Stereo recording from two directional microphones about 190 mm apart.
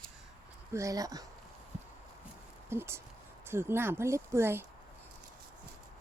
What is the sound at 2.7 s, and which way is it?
Speech, 15° right (ahead or behind).